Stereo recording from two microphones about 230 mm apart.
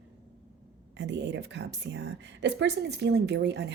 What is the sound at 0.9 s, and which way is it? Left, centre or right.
A woman's voice, right.